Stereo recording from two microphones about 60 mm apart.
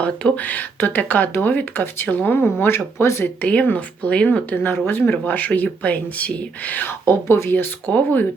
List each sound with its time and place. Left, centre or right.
0.0 s speech: left
3.4 s speech: left
5.2 s speech: left
7.0 s speech: left
7.5 s speech: left